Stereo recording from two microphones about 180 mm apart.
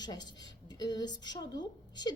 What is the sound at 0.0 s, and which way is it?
A woman's voice, 25° left (ahead or behind).